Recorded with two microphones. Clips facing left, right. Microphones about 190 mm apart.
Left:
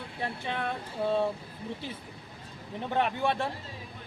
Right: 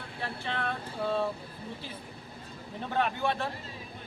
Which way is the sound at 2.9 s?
25° left (ahead or behind).